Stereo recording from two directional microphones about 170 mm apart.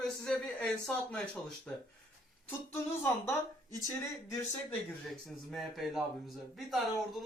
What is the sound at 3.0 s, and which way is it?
Speech, 15° left (ahead or behind).